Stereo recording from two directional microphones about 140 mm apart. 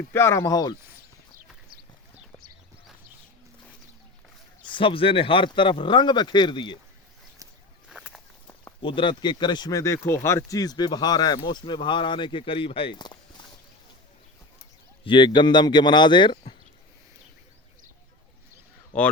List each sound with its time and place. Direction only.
0.1 s speech: 20° left (ahead or behind)
4.6 s speech: 35° left (ahead or behind)
7.9 s walk: 5° right (ahead or behind)
8.8 s speech: 35° left (ahead or behind)
15.0 s speech: 35° left (ahead or behind)
18.9 s speech: 10° left (ahead or behind)